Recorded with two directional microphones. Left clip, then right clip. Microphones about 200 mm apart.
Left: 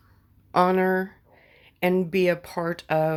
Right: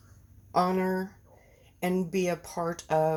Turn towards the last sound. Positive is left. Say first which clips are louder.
# left 3 dB
turn(degrees=30)  # may be behind; listen again after turning